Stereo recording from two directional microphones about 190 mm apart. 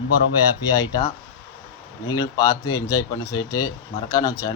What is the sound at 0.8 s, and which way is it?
A man's voice, 20° left (ahead or behind).